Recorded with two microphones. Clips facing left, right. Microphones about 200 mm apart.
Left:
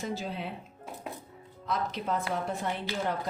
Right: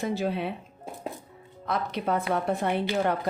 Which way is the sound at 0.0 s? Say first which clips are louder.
Right 7 dB; 65° right (ahead or behind).